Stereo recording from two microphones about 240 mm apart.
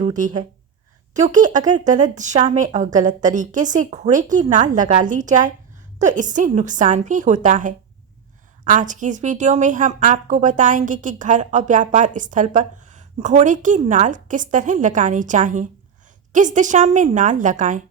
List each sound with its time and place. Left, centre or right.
0.0 s a woman's voice: right